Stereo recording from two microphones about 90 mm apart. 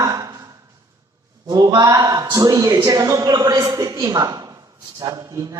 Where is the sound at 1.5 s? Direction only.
45° right (ahead or behind).